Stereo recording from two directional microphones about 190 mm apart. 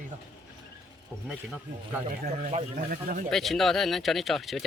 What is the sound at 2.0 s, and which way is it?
Speech, 40° right (ahead or behind).